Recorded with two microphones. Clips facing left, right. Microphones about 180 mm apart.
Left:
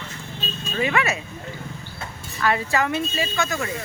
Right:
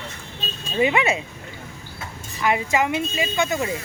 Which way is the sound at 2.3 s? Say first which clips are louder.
Right 1 dB; 15° right (ahead or behind).